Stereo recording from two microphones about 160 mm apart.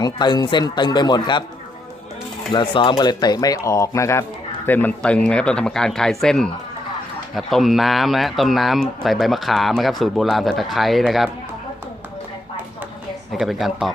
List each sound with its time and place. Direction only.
0.0 s a man's voice: 25° left (ahead or behind)
2.5 s a man's voice: 30° left (ahead or behind); by 11.3 s centre (ahead or behind)
13.3 s speech: centre (ahead or behind)